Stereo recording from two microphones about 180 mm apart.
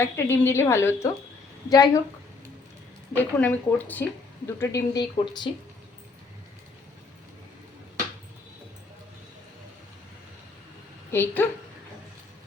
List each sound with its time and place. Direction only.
0.0 s a woman's voice: 15° left (ahead or behind)
3.2 s a woman's voice: 10° left (ahead or behind); by 5.5 s 25° left (ahead or behind)
11.1 s a woman's voice: 10° left (ahead or behind)